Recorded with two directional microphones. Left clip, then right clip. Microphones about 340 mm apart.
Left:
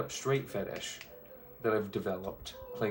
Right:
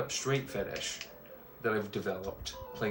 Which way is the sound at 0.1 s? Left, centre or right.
Centre.